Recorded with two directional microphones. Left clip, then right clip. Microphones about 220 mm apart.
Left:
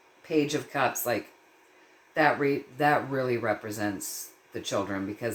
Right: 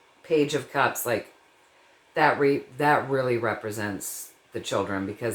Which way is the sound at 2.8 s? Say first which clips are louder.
Right 2 dB; 25° right (ahead or behind).